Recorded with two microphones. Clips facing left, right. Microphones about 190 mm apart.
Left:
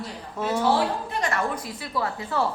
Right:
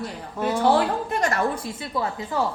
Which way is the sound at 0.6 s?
55° right (ahead or behind).